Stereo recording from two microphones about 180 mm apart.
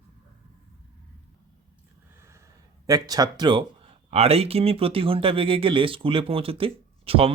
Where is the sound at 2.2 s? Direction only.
15° right (ahead or behind).